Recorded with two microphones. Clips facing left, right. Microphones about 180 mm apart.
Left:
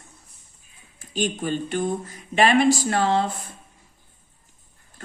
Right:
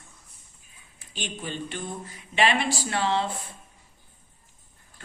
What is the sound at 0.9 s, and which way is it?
Speech, 45° left (ahead or behind).